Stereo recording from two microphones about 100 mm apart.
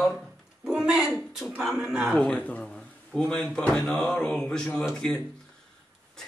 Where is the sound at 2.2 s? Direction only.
10° left (ahead or behind).